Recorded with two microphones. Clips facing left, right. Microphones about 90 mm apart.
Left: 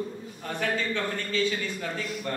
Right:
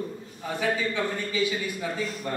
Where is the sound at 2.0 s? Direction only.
35° right (ahead or behind).